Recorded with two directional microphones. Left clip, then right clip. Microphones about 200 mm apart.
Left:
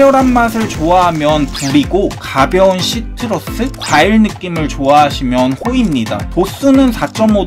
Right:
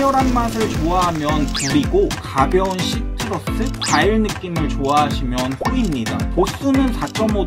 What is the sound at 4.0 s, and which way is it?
Speech, 35° left (ahead or behind).